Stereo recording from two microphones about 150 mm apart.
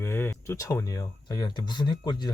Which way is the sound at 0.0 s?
15° left (ahead or behind).